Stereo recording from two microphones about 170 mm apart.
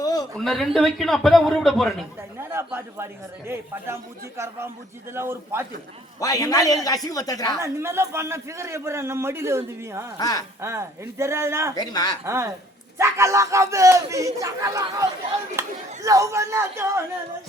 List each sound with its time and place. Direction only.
0.0 s a sound: 20° left (ahead or behind)
0.3 s a man's voice: centre (ahead or behind)
2.4 s a man's voice: 15° right (ahead or behind)
6.1 s a man's voice: 20° left (ahead or behind)
7.6 s a man's voice: 15° right (ahead or behind)
10.2 s a man's voice: 20° left (ahead or behind)
10.6 s a man's voice: 15° right (ahead or behind)
11.7 s a man's voice: 25° left (ahead or behind)
12.2 s a man's voice: 15° right (ahead or behind)